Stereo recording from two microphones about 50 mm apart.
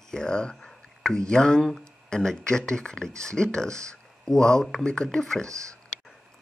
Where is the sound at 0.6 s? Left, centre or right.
Centre.